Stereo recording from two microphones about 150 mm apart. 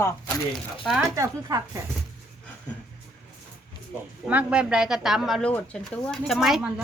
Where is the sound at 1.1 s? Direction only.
25° right (ahead or behind).